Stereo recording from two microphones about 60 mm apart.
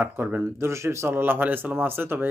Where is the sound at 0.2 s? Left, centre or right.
Right.